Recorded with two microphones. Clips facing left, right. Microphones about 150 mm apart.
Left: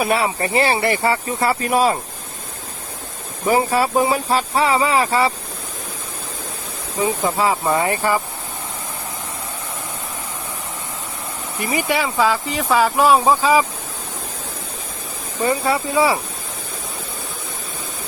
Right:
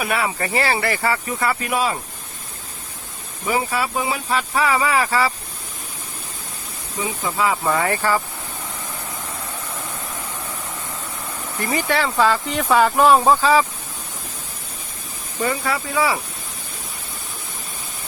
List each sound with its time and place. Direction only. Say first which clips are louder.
0.0 s speech: left 4 dB; 30° left (ahead or behind)
3.4 s speech: left 5 dB; 40° left (ahead or behind); by 5.3 s 25° left (ahead or behind)
7.3 s speech: even; 35° left (ahead or behind)
7.6 s speech: left 2 dB; 20° left (ahead or behind)
11.6 s speech: left 1 dB; 15° left (ahead or behind)
15.4 s speech: left 5 dB; 25° left (ahead or behind)